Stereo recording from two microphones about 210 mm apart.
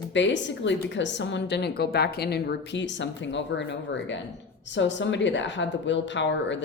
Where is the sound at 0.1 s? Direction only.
60° left (ahead or behind).